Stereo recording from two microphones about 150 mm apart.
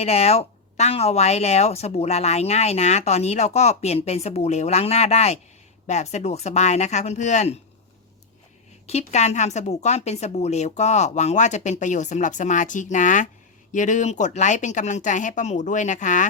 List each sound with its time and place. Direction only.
0.0 s a woman's voice: 45° left (ahead or behind)
8.9 s a woman's voice: 50° left (ahead or behind)